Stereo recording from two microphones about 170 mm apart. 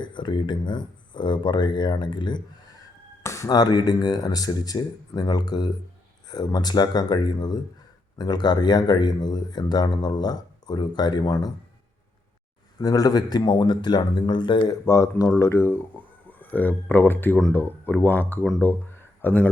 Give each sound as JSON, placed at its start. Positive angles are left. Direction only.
{"t": 0.0, "sound": "speech", "side_deg": 25}
{"t": 12.8, "sound": "speech", "side_deg": 20}